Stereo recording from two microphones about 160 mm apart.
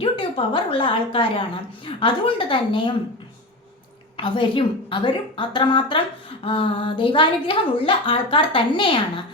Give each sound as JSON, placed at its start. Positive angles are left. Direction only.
{"t": 0.0, "sound": "a woman's voice", "side_deg": 30}
{"t": 4.2, "sound": "a woman's voice", "side_deg": 30}